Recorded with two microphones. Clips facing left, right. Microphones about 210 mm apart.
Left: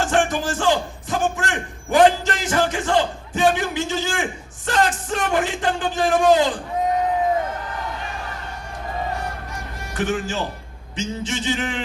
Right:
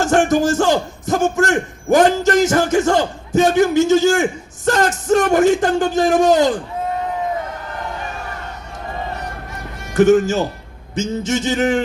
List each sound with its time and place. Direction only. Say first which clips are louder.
0.0 s a man's voice: right 6 dB; 45° right (ahead or behind)
9.9 s a man's voice: right 12 dB; 45° right (ahead or behind)